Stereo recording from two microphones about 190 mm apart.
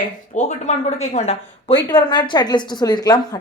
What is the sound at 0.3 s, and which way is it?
Speech, 35° left (ahead or behind).